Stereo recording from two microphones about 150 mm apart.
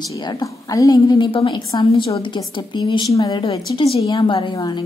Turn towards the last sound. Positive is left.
turn(degrees=30)  # may be behind; listen again after turning